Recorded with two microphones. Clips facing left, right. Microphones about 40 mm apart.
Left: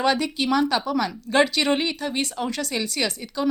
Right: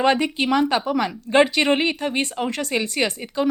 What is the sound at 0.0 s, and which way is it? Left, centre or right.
Speech, right.